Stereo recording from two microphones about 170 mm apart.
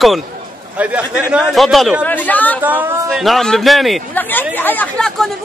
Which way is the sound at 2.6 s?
10° right (ahead or behind).